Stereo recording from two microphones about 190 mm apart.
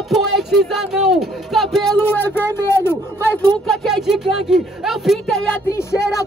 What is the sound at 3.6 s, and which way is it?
Speech, centre (ahead or behind).